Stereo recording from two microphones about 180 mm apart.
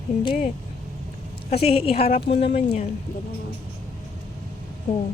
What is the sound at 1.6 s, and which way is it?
A woman's voice, 35° left (ahead or behind).